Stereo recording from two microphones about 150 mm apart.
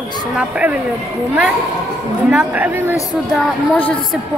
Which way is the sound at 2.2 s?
10° right (ahead or behind).